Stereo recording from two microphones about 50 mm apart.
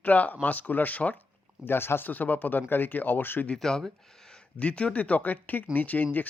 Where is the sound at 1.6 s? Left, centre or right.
Left.